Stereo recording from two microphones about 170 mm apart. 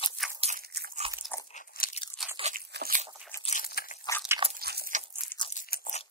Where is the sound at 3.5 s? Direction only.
55° left (ahead or behind).